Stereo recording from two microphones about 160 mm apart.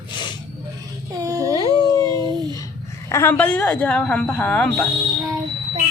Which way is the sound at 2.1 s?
25° right (ahead or behind).